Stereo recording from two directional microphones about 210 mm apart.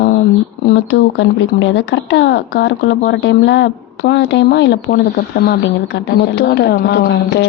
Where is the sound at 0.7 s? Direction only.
65° left (ahead or behind).